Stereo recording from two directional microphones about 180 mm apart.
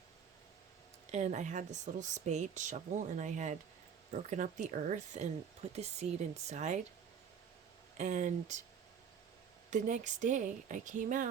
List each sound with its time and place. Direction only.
1.1 s speech: 40° right (ahead or behind)
7.9 s speech: 40° right (ahead or behind)
9.6 s speech: 40° right (ahead or behind)